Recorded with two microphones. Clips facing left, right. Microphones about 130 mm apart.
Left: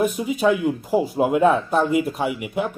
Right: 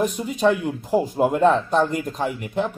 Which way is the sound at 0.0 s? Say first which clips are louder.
Left 1 dB; 5° left (ahead or behind).